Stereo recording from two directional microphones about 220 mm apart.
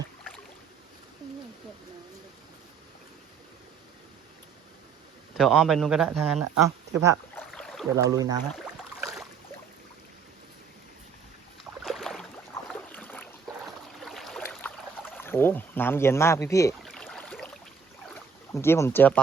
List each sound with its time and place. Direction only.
5.4 s speech: centre (ahead or behind)
6.6 s speech: 15° right (ahead or behind)
7.3 s boat: centre (ahead or behind)
7.9 s speech: 15° right (ahead or behind)
11.8 s a sound: centre (ahead or behind)
12.7 s boat: 5° left (ahead or behind)
14.0 s a sound: centre (ahead or behind)
16.8 s boat: 5° left (ahead or behind)